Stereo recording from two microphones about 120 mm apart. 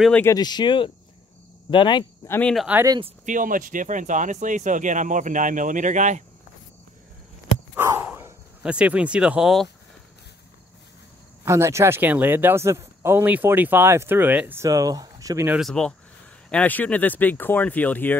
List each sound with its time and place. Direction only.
0.3 s speech: 35° left (ahead or behind)
2.7 s speech: 15° right (ahead or behind)
3.3 s speech: 90° right
7.7 s a sound: 25° right (ahead or behind)
8.0 s speech: 15° right (ahead or behind)
11.4 s speech: 20° right (ahead or behind)
14.6 s speech: 30° right (ahead or behind)
15.6 s speech: 5° left (ahead or behind)